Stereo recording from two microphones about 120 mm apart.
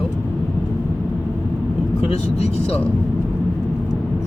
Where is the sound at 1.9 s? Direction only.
60° left (ahead or behind).